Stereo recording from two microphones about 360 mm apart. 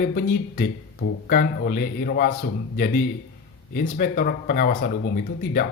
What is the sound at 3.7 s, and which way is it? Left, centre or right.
Speech, left.